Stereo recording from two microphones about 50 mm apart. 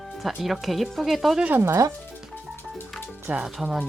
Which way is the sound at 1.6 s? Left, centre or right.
Right.